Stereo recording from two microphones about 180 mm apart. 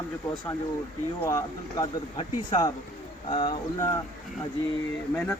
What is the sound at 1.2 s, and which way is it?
A man's voice, 20° left (ahead or behind).